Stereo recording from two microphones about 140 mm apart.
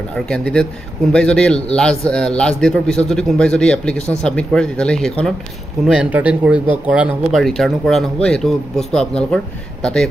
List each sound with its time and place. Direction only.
0.1 s a man's voice: 5° left (ahead or behind)
5.9 s speech: 10° right (ahead or behind)